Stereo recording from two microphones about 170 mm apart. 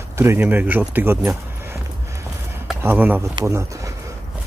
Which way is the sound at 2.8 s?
10° right (ahead or behind).